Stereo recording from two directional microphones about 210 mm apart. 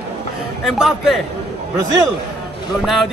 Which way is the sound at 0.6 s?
Centre (ahead or behind).